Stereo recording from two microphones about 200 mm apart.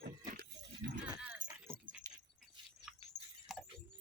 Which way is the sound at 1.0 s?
20° right (ahead or behind).